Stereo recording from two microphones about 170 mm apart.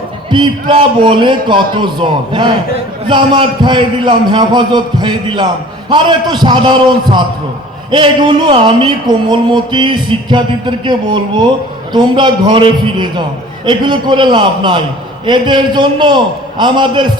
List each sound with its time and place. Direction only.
0.3 s speech: 30° right (ahead or behind)